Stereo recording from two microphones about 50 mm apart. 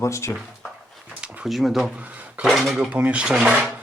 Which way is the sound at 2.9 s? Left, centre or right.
Right.